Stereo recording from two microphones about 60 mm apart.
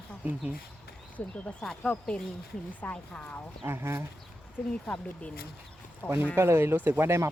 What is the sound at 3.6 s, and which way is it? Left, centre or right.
Speech, right.